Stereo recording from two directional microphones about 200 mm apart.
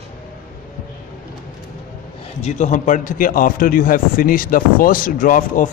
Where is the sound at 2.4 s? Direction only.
40° left (ahead or behind).